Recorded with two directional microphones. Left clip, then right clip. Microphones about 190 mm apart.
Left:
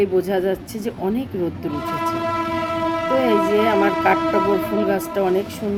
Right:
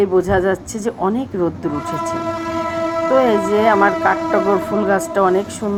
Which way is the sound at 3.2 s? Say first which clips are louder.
Right 3 dB; 45° right (ahead or behind).